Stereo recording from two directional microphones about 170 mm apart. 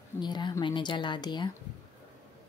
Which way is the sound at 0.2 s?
25° left (ahead or behind).